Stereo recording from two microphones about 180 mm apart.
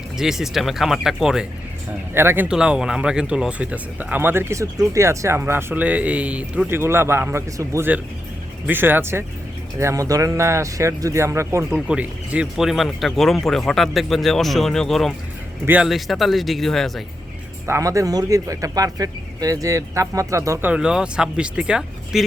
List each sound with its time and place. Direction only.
0.2 s speech: centre (ahead or behind)
17.7 s speech: 15° right (ahead or behind)